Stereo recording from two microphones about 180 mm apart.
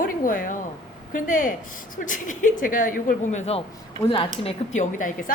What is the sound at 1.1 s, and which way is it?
A woman's voice, 50° left (ahead or behind).